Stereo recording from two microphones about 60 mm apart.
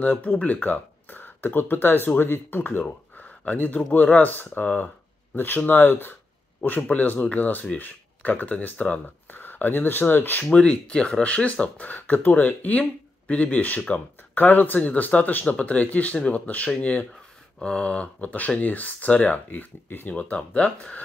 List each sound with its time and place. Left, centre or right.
0.0 s speech: left
9.3 s speech: left
10.4 s speech: centre; by 20.2 s left
20.2 s speech: left